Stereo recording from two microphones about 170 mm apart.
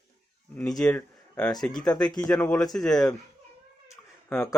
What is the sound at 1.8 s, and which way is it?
Speech, 25° left (ahead or behind).